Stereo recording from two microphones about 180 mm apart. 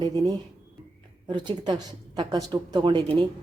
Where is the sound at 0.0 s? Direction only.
20° right (ahead or behind).